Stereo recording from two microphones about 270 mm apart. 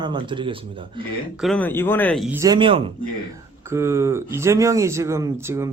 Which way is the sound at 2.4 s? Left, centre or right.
Centre.